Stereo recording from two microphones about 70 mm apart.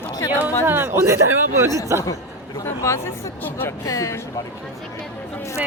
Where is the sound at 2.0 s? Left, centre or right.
Left.